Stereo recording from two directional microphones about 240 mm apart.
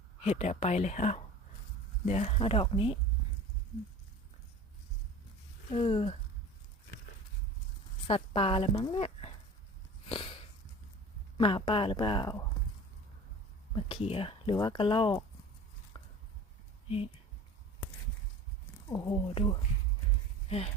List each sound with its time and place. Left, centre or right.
0.2 s speech: left
5.7 s speech: left
8.0 s speech: left
10.1 s a sound: centre
11.3 s speech: left
13.7 s speech: left
15.9 s a sound: centre
18.9 s speech: centre